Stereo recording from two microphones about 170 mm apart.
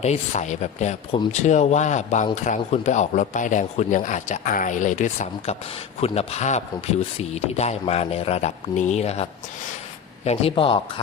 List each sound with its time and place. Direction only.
0.0 s speech: 40° left (ahead or behind)